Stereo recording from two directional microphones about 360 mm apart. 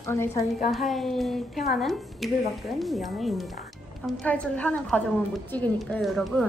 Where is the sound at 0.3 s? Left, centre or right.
Centre.